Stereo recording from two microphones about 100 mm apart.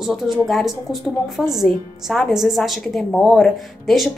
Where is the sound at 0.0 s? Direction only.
Centre (ahead or behind).